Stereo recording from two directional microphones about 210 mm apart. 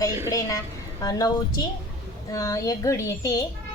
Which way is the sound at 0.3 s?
15° left (ahead or behind).